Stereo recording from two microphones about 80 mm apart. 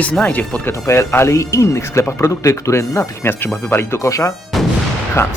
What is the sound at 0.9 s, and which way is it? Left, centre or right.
Speech, left.